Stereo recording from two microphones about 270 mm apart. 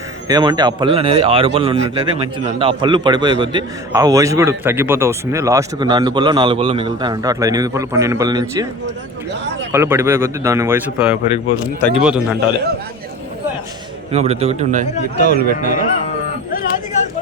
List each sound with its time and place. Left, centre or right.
0.3 s a man's voice: centre
9.3 s speech: right
9.7 s a man's voice: centre
14.1 s speech: right
16.5 s music: left